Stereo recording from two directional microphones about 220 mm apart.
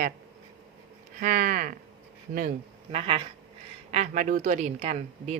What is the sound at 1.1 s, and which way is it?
Speech, 40° right (ahead or behind).